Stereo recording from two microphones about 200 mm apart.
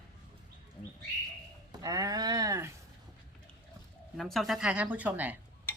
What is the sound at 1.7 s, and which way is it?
Speech, 20° right (ahead or behind).